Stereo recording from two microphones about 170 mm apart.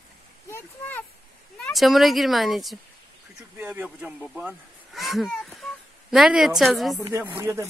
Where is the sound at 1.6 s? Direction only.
Centre (ahead or behind).